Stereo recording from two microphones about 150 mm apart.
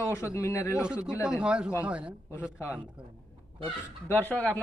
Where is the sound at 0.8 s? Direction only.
5° right (ahead or behind).